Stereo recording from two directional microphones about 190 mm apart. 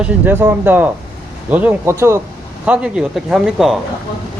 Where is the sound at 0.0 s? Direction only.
10° right (ahead or behind).